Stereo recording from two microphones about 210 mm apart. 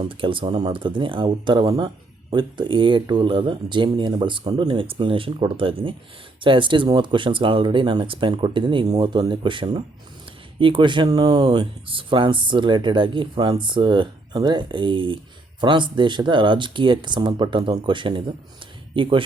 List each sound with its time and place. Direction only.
0.0 s speech: 25° right (ahead or behind)